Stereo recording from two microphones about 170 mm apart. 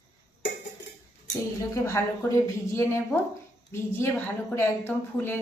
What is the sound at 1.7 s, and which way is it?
A woman's voice, 15° left (ahead or behind).